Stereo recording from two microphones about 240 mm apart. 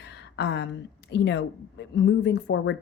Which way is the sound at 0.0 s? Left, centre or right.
Left.